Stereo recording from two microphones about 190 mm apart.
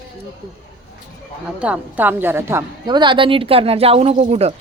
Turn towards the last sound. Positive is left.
turn(degrees=-35)  # may be behind; listen again after turning